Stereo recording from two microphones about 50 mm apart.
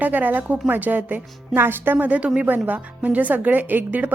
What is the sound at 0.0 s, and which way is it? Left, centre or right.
Speech, right.